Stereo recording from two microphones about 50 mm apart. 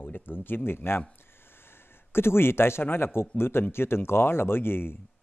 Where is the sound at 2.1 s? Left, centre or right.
Left.